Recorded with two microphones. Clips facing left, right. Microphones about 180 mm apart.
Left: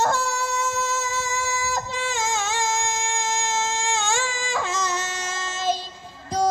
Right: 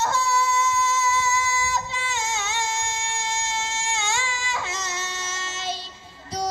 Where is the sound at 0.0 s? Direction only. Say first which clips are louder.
Even; 50° left (ahead or behind).